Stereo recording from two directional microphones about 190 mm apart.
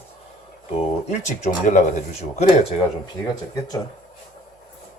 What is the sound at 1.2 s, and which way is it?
Speech, 40° left (ahead or behind).